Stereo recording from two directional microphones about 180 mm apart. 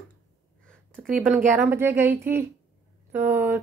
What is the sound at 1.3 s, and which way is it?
Speech, 10° right (ahead or behind).